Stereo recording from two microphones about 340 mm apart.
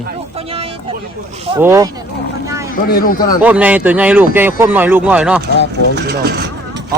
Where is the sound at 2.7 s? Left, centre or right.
Left.